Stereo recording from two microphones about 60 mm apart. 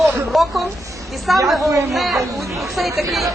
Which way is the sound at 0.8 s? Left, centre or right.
Right.